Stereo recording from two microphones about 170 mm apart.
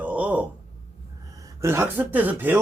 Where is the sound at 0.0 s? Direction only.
10° right (ahead or behind).